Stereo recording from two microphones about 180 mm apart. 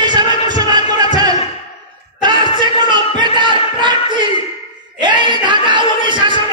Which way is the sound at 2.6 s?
25° right (ahead or behind).